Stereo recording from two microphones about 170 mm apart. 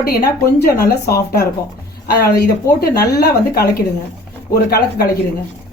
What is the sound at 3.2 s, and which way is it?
Speech, 70° left (ahead or behind).